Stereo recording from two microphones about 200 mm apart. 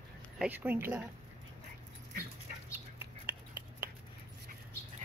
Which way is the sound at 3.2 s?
10° right (ahead or behind).